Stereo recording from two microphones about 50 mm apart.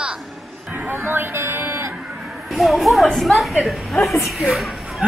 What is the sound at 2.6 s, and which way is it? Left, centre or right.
A woman's voice, centre.